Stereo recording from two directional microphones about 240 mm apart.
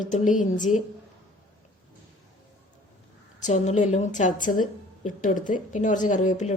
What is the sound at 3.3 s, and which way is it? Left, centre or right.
A woman's voice, left.